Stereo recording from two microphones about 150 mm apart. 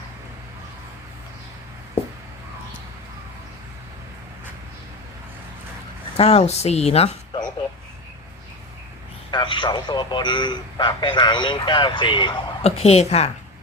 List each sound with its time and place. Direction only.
6.1 s speech: 45° left (ahead or behind)
9.3 s a man's voice: 30° left (ahead or behind)